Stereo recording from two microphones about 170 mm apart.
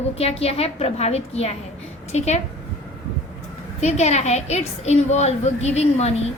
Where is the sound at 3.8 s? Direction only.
40° left (ahead or behind).